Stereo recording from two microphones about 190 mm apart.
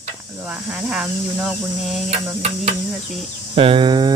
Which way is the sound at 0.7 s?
5° right (ahead or behind).